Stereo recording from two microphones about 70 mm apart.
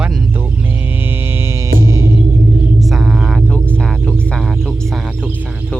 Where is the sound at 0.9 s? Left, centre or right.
Right.